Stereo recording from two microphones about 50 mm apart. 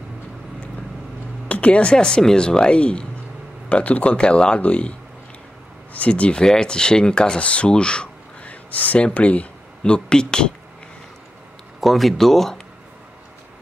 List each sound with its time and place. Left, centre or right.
1.5 s speech: left
5.9 s speech: left
8.5 s a sound: left
9.0 s speech: left
11.8 s speech: centre